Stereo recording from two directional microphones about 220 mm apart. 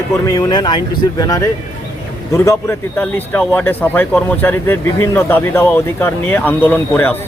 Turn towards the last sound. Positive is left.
turn(degrees=10)  # may be behind; listen again after turning